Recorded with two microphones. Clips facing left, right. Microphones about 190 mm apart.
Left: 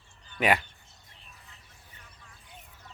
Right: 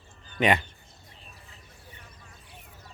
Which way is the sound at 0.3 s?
5° left (ahead or behind).